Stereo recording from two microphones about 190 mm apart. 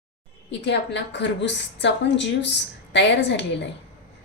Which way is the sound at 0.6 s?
65° left (ahead or behind).